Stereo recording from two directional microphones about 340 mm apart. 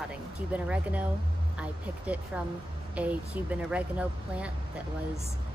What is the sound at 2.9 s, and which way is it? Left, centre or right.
Speech, centre.